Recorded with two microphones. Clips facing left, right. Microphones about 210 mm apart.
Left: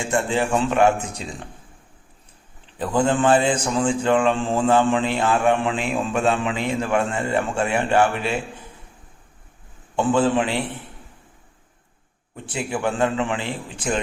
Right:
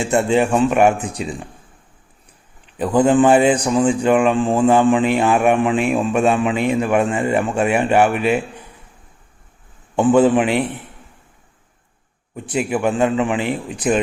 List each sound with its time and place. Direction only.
0.0 s a man's voice: 20° right (ahead or behind)
2.7 s a man's voice: 20° right (ahead or behind)
9.9 s a man's voice: 20° right (ahead or behind)
12.5 s a man's voice: 20° right (ahead or behind)